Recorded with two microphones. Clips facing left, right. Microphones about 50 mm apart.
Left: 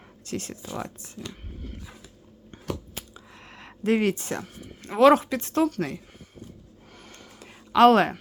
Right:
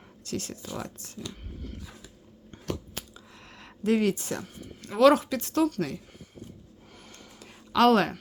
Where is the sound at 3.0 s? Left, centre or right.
Left.